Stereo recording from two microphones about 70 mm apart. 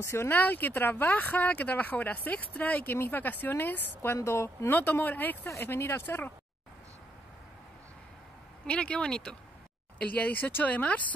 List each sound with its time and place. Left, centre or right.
0.0 s speech: left
0.3 s speech: left
4.7 s speech: left
5.5 s speech: left
8.6 s speech: centre